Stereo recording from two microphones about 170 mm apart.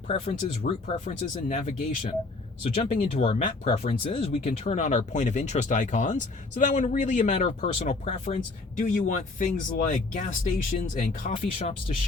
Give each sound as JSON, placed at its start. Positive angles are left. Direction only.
{"t": 0.1, "sound": "speech", "side_deg": 35}